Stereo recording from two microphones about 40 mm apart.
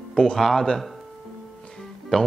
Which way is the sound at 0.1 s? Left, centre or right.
Centre.